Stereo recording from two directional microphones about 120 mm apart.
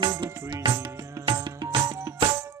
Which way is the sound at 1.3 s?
45° right (ahead or behind).